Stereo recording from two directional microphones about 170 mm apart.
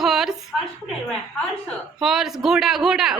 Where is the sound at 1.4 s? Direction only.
Centre (ahead or behind).